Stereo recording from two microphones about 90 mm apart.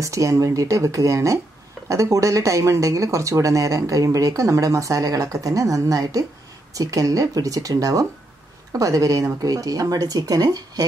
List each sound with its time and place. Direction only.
0.0 s speech: 35° right (ahead or behind)